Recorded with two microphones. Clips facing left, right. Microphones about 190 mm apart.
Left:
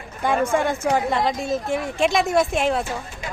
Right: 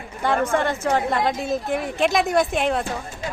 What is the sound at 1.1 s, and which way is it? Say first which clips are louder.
Speech: even; centre (ahead or behind).